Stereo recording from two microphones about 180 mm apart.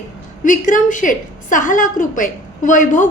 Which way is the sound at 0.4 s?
45° left (ahead or behind).